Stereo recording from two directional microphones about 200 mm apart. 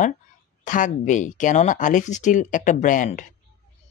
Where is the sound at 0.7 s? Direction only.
40° left (ahead or behind).